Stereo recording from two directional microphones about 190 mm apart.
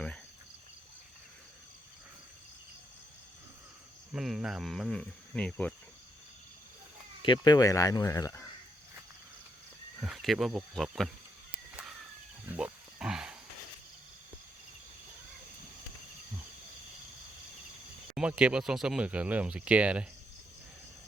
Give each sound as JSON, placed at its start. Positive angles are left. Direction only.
{"t": 4.1, "sound": "speech", "side_deg": -5}
{"t": 7.2, "sound": "speech", "side_deg": 25}
{"t": 10.0, "sound": "speech", "side_deg": 0}
{"t": 12.5, "sound": "wild animals", "side_deg": -5}
{"t": 18.1, "sound": "speech", "side_deg": -5}